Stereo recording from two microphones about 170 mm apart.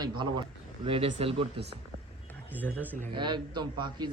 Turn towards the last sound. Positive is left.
turn(degrees=-25)  # may be behind; listen again after turning